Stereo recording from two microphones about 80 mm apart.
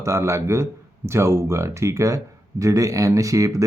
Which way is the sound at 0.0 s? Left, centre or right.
Right.